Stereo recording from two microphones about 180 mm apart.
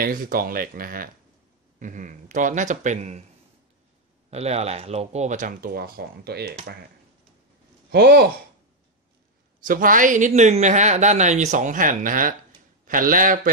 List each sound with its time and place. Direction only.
0.0 s speech: 50° right (ahead or behind)
4.3 s speech: 35° right (ahead or behind); by 6.5 s 60° right (ahead or behind)
7.9 s speech: 60° right (ahead or behind)
9.7 s speech: 50° right (ahead or behind)